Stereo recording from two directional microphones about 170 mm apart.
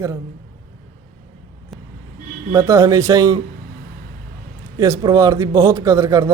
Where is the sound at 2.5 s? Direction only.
20° right (ahead or behind).